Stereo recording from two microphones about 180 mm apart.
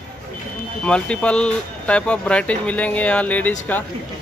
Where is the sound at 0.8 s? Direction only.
5° left (ahead or behind).